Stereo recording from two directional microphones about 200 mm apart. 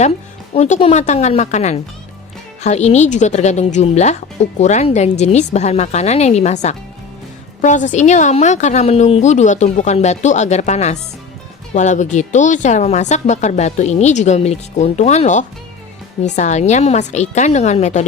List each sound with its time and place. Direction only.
0.5 s speech: 30° left (ahead or behind)